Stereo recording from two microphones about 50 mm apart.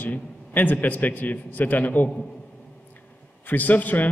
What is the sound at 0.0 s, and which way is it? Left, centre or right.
A man's voice, left.